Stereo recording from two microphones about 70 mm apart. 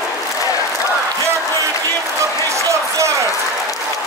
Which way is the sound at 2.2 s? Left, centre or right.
Right.